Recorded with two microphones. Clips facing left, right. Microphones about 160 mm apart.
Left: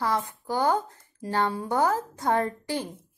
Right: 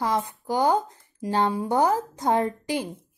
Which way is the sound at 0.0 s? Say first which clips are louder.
Right 2 dB; 15° right (ahead or behind).